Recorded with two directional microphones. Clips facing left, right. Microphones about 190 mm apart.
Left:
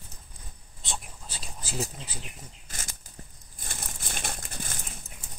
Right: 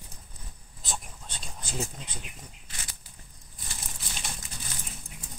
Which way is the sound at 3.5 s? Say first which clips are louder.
Left 2 dB; 50° left (ahead or behind).